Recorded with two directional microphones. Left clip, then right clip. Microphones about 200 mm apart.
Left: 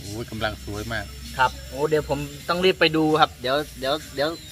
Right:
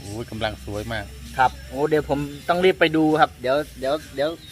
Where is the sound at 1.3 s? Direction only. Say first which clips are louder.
Right 2 dB; 30° right (ahead or behind); by 4.0 s 5° right (ahead or behind).